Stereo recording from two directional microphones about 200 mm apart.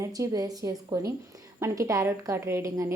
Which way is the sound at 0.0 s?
15° right (ahead or behind).